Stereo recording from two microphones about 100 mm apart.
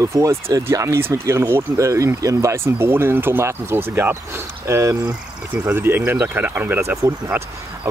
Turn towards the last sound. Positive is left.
turn(degrees=-25)  # may be behind; listen again after turning